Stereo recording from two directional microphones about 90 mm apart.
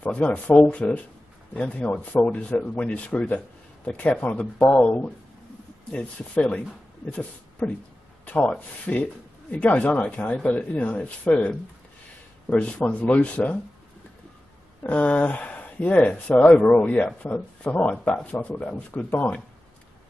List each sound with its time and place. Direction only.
0.0 s speech: 15° left (ahead or behind)
14.8 s speech: 15° left (ahead or behind)